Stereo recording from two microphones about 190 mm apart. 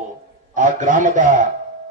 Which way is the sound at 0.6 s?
45° right (ahead or behind).